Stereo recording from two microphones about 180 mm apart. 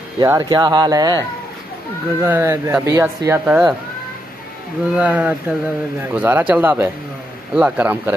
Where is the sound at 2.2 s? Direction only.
10° right (ahead or behind).